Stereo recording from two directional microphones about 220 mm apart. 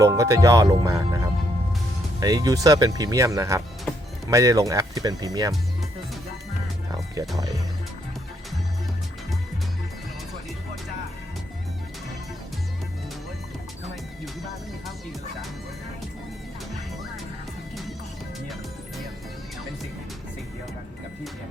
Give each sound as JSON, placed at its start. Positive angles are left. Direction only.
{"t": 0.0, "sound": "speech", "side_deg": -15}
{"t": 3.9, "sound": "music", "side_deg": 5}
{"t": 4.3, "sound": "speech", "side_deg": -15}